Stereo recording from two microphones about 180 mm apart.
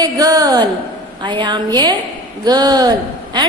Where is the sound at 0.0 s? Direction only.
20° right (ahead or behind).